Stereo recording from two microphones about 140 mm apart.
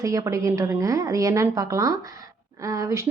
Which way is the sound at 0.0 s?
20° right (ahead or behind).